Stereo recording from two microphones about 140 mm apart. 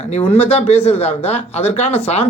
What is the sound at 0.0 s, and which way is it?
Speech, 45° left (ahead or behind).